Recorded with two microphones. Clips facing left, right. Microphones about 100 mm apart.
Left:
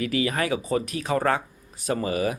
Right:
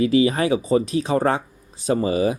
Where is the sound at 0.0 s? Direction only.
25° right (ahead or behind).